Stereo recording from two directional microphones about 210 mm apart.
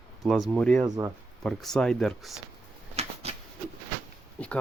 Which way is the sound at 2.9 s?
30° right (ahead or behind).